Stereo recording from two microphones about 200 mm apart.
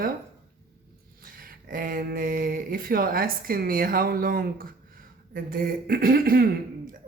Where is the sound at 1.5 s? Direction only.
45° right (ahead or behind).